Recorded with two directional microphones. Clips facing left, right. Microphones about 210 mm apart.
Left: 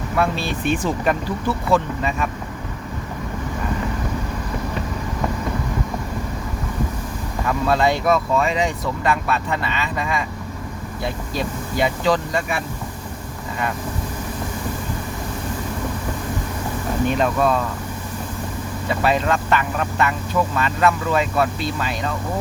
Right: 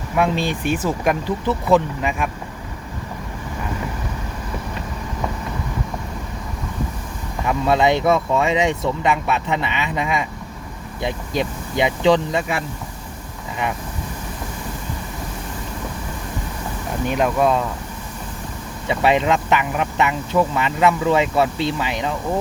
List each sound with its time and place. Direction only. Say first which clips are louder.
0.2 s speech: right 2 dB; 15° right (ahead or behind)
7.4 s speech: right 2 dB; 20° right (ahead or behind)
17.1 s speech: right 2 dB; 10° right (ahead or behind)
18.9 s speech: right 2 dB; 20° right (ahead or behind)